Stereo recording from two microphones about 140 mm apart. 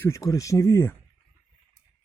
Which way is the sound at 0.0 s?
20° left (ahead or behind).